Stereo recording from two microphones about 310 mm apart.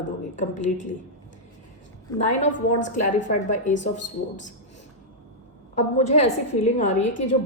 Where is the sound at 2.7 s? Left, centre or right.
Left.